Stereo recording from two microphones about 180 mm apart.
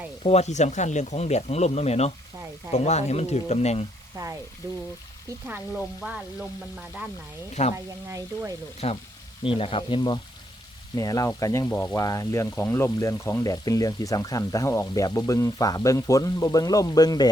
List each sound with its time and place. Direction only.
0.2 s speech: 35° left (ahead or behind)
5.5 s frying: 5° right (ahead or behind)
7.5 s speech: 40° left (ahead or behind)
8.8 s speech: 35° left (ahead or behind)